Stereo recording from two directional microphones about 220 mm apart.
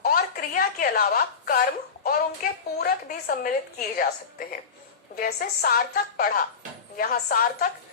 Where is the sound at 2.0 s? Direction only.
45° left (ahead or behind).